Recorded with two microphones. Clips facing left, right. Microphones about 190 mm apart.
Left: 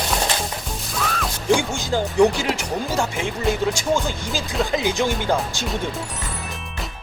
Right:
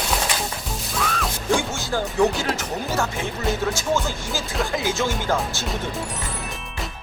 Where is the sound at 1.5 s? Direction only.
15° left (ahead or behind).